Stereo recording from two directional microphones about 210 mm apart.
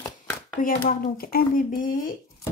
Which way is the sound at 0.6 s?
40° left (ahead or behind).